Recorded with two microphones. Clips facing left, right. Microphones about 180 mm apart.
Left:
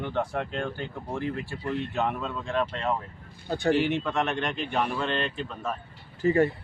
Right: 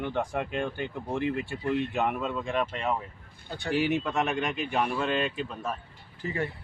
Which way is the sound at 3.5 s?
45° left (ahead or behind).